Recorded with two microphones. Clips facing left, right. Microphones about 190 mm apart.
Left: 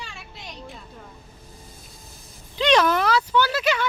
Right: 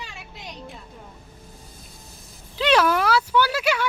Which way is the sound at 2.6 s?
5° right (ahead or behind).